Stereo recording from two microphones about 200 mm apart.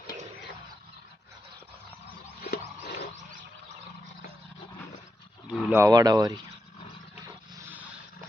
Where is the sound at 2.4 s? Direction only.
50° left (ahead or behind).